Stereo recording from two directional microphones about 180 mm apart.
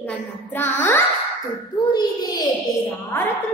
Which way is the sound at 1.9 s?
20° left (ahead or behind).